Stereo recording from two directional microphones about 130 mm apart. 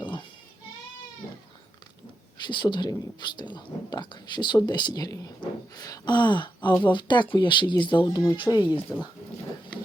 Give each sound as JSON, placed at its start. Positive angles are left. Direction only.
{"t": 0.0, "sound": "a sound", "side_deg": 40}
{"t": 2.5, "sound": "speech", "side_deg": 35}
{"t": 8.9, "sound": "speech", "side_deg": 20}